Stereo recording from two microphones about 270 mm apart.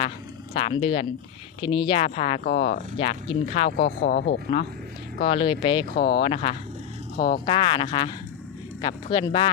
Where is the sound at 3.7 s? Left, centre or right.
Left.